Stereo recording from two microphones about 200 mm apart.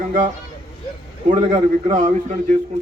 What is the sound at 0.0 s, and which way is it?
Speech, 40° right (ahead or behind).